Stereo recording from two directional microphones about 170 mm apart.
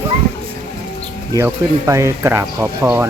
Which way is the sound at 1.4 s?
15° right (ahead or behind).